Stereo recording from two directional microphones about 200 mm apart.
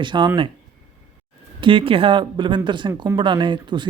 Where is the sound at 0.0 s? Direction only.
25° right (ahead or behind).